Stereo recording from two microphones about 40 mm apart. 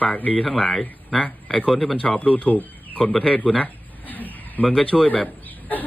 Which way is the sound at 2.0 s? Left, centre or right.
Left.